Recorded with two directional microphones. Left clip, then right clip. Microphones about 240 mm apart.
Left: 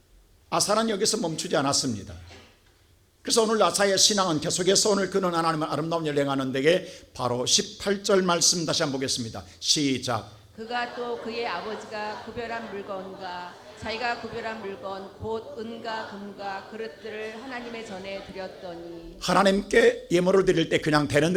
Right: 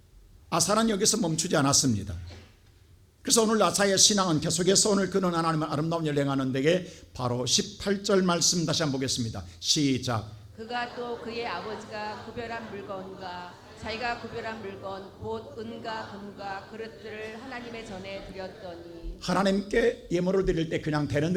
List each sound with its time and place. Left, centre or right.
0.5 s a man's voice: centre
3.2 s a man's voice: centre
19.2 s a man's voice: centre